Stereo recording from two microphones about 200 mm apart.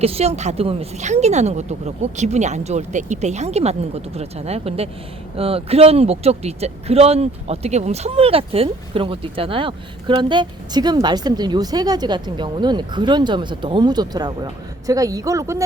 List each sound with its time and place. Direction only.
0.0 s speech: 30° right (ahead or behind)